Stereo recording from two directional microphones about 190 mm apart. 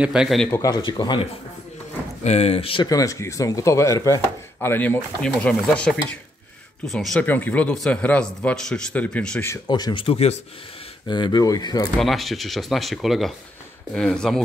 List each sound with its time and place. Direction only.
0.0 s speech: 5° right (ahead or behind)
0.5 s speech: 20° left (ahead or behind)
2.2 s speech: 35° left (ahead or behind); by 9.6 s 10° left (ahead or behind)
9.7 s speech: 20° left (ahead or behind)
11.1 s speech: 25° left (ahead or behind)
12.0 s speech: centre (ahead or behind)